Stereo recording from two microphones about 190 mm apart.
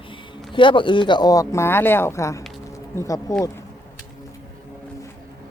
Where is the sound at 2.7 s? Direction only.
15° left (ahead or behind).